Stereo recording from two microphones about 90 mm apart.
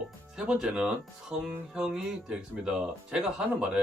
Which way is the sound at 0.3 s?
10° right (ahead or behind).